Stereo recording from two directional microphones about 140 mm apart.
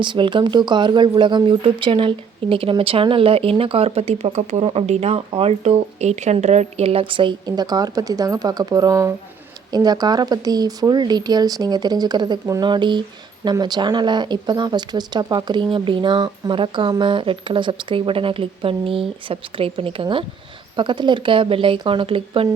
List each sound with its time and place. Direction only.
0.0 s speech: 35° right (ahead or behind)